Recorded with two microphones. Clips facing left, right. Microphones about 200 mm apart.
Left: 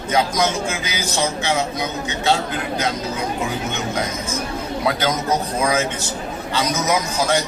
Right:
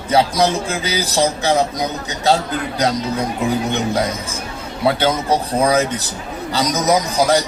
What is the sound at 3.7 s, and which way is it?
Speech, 35° right (ahead or behind).